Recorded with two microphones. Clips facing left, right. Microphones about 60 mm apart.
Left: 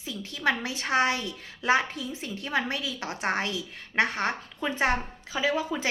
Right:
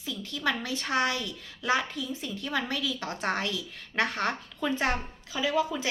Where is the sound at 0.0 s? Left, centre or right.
Left.